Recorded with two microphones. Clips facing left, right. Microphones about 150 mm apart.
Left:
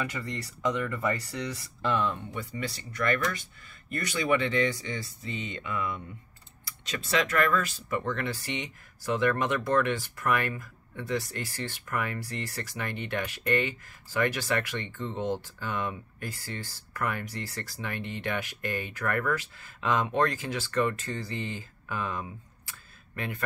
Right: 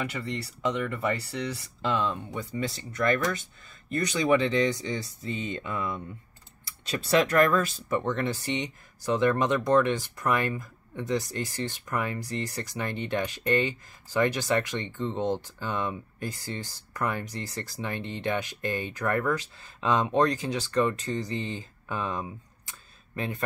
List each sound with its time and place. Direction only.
0.2 s speech: 25° right (ahead or behind)
1.9 s speech: 20° right (ahead or behind)
5.5 s speech: 40° right (ahead or behind)